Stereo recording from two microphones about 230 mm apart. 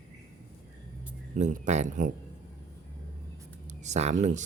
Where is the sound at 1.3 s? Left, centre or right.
Right.